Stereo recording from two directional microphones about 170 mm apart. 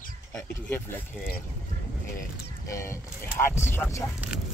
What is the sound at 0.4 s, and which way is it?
Speech, 10° left (ahead or behind).